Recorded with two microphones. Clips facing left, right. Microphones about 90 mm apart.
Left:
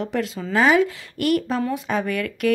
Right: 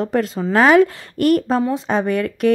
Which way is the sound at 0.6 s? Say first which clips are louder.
Right 5 dB; 55° right (ahead or behind).